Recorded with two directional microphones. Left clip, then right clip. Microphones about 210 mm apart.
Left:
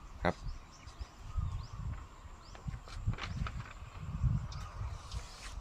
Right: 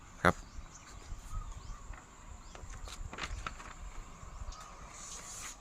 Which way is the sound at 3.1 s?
45° right (ahead or behind).